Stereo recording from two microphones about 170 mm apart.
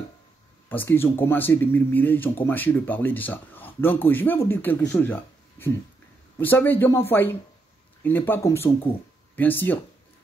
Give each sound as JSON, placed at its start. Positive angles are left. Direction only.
{"t": 0.7, "sound": "speech", "side_deg": 10}